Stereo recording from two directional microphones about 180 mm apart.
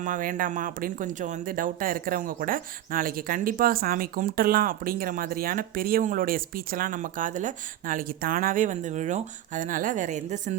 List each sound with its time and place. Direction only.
0.0 s speech: 50° right (ahead or behind)